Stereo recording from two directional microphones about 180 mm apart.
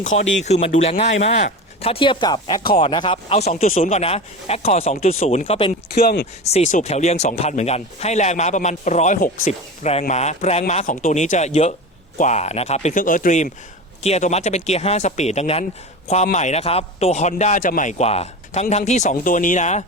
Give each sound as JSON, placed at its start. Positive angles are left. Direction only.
{"t": 0.4, "sound": "speech", "side_deg": 35}
{"t": 5.9, "sound": "speech", "side_deg": 60}
{"t": 6.4, "sound": "speech", "side_deg": 40}